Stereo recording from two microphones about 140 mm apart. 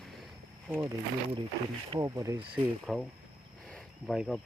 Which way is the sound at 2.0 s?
25° right (ahead or behind).